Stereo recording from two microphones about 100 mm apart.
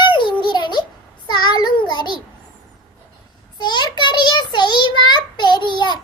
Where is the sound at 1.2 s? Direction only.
45° left (ahead or behind).